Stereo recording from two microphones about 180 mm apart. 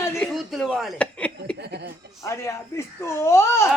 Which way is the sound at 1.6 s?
65° right (ahead or behind).